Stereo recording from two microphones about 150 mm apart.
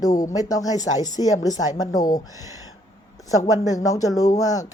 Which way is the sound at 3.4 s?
25° left (ahead or behind).